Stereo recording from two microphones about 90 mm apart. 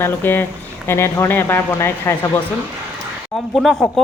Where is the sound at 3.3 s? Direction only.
5° left (ahead or behind).